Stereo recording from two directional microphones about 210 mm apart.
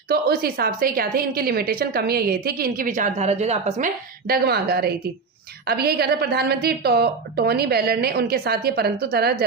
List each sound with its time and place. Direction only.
0.1 s a woman's voice: 45° right (ahead or behind)
4.3 s a woman's voice: 50° right (ahead or behind)